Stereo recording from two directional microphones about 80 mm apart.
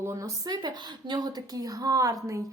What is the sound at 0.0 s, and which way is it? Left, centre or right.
Speech, right.